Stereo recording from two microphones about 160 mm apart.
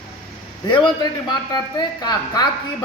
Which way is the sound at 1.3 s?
25° left (ahead or behind).